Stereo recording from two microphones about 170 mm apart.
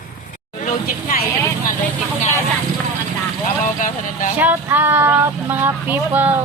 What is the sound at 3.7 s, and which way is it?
Speech, 50° left (ahead or behind).